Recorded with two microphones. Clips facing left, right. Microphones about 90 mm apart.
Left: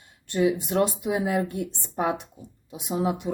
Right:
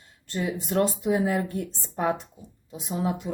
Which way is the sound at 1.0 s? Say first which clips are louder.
Right 1 dB; 10° left (ahead or behind).